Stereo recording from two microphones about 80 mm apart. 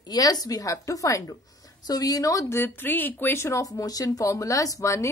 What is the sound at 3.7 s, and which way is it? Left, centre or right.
Speech, left.